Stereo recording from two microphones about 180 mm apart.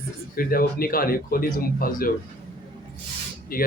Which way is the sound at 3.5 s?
55° left (ahead or behind).